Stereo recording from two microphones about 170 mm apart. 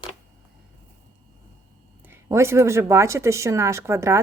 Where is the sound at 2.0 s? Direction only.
15° right (ahead or behind).